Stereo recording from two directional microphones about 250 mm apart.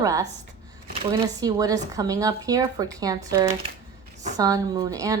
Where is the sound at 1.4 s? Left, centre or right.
Centre.